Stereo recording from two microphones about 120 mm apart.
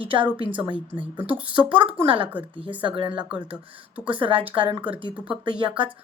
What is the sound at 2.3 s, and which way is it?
Speech, 10° right (ahead or behind).